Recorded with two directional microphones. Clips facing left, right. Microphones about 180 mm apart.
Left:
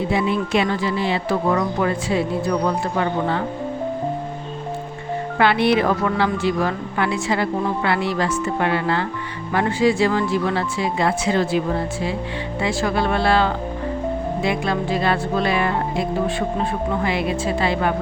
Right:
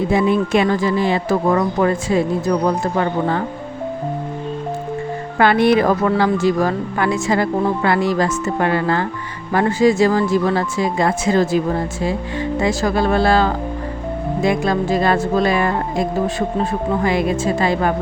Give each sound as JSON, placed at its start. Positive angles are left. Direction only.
{"t": 0.1, "sound": "a woman's voice", "side_deg": -45}
{"t": 5.4, "sound": "a woman's voice", "side_deg": -45}